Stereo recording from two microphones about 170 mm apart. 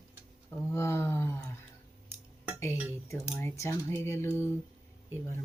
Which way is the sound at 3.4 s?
15° left (ahead or behind).